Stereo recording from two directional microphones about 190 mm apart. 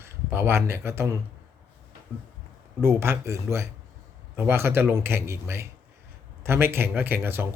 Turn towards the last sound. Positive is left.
turn(degrees=-10)  # may be behind; listen again after turning